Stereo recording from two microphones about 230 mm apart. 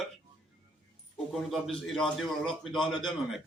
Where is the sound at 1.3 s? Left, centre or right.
Centre.